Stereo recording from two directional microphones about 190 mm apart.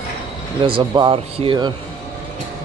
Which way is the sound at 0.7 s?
25° right (ahead or behind).